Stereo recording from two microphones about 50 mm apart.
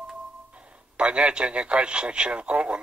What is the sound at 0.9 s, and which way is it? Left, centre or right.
Speech, right.